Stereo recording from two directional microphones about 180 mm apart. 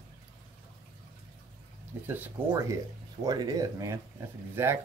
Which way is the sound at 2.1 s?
10° right (ahead or behind).